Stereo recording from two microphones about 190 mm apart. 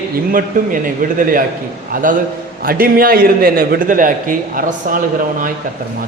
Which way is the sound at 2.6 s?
50° right (ahead or behind).